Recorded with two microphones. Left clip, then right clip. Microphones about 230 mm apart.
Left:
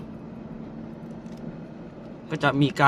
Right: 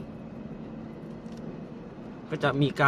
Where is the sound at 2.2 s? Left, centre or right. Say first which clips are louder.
Left 4 dB; centre.